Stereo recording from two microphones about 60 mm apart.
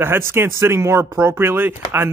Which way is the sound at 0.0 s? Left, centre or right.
Right.